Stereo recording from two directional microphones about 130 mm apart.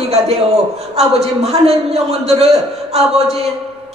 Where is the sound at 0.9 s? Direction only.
50° right (ahead or behind).